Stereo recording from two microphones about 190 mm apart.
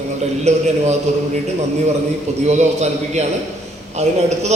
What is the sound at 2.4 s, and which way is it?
A man's voice, 35° right (ahead or behind).